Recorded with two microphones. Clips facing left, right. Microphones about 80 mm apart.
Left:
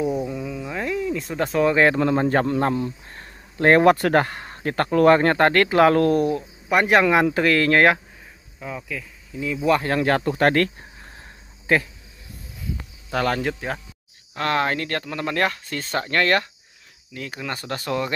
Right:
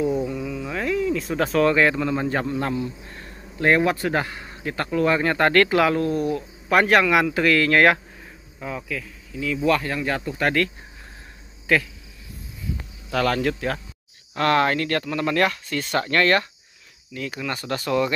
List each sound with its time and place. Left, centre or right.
0.0 s cricket: centre
1.1 s cricket: centre
1.8 s speech: left
5.5 s speech: left
5.9 s speech: left
6.9 s speech: left
8.5 s cricket: centre
9.3 s speech: left
9.8 s speech: left
11.6 s speech: left
13.1 s speech: left